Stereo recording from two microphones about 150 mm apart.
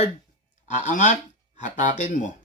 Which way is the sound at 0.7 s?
55° left (ahead or behind).